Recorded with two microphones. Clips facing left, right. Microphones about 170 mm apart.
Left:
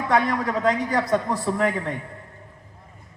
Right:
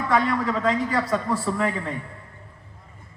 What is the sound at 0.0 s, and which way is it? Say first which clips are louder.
A man's voice: even; 15° left (ahead or behind).